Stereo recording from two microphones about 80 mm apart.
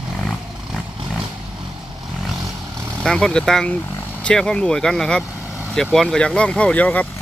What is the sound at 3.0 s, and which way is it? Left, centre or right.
Speech, centre.